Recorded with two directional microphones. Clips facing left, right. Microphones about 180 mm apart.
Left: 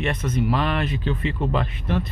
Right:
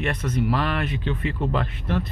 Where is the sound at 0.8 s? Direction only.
35° left (ahead or behind).